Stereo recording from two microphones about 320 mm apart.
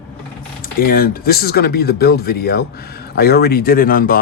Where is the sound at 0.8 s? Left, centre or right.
Left.